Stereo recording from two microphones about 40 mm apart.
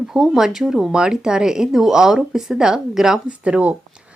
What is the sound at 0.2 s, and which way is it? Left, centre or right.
Speech, centre.